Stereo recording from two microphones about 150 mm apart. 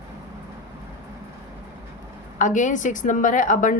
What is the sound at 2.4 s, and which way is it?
Speech, 55° left (ahead or behind).